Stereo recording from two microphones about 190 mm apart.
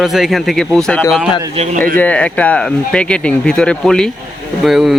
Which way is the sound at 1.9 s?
5° left (ahead or behind).